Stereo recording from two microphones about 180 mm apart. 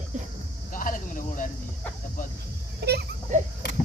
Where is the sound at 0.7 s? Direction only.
45° left (ahead or behind).